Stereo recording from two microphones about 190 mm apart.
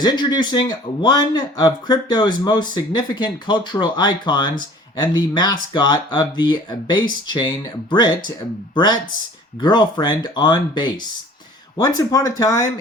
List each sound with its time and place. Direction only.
0.0 s speech: 20° left (ahead or behind)